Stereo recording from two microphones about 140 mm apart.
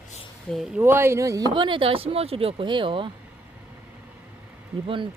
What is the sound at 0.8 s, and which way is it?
Speech, 15° right (ahead or behind).